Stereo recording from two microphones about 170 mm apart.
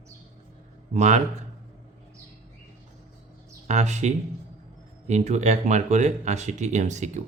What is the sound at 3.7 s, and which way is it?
Speech, 40° right (ahead or behind).